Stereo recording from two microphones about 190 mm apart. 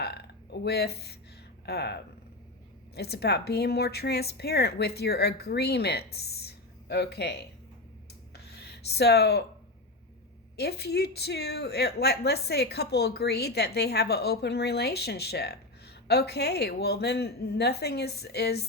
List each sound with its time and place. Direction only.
0.6 s a woman's voice: 60° left (ahead or behind)
8.5 s speech: 60° left (ahead or behind)
10.6 s a woman's voice: 60° left (ahead or behind)